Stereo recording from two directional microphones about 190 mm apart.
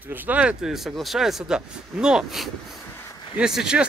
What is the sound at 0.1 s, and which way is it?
Speech, 10° right (ahead or behind).